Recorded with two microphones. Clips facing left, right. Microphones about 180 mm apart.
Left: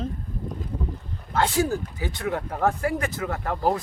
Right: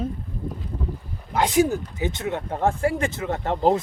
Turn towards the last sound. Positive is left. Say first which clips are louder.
# right 4 dB
turn(degrees=-25)  # may be behind; listen again after turning